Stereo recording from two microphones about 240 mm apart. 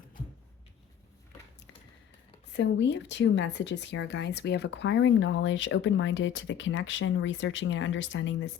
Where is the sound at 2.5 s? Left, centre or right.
Left.